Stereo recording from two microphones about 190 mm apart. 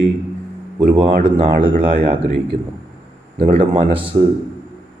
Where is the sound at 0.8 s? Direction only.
25° right (ahead or behind).